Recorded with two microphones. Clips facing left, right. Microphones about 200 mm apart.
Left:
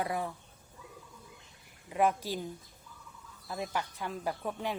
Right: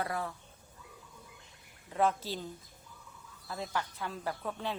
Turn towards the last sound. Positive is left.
turn(degrees=15)  # may be behind; listen again after turning